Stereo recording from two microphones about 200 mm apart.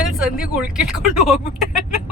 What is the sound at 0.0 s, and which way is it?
Speech, 5° right (ahead or behind).